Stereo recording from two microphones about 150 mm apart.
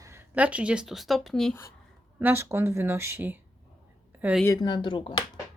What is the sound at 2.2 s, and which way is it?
Speech, 15° right (ahead or behind).